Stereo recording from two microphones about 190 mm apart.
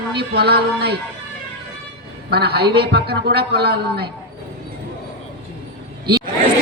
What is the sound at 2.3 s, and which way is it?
A man's voice, 55° right (ahead or behind).